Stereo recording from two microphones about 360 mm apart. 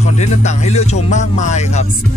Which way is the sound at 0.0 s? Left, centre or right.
Centre.